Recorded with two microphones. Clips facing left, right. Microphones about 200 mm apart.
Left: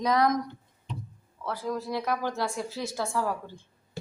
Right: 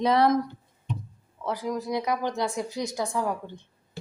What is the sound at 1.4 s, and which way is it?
Speech, 20° right (ahead or behind).